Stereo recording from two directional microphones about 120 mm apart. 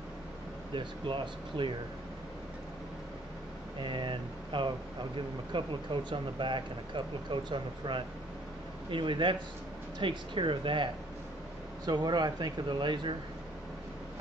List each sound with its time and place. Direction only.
0.7 s speech: 40° right (ahead or behind)
3.8 s speech: 45° right (ahead or behind)